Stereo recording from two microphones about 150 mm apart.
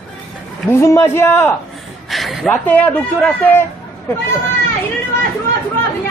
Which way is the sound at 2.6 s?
10° left (ahead or behind).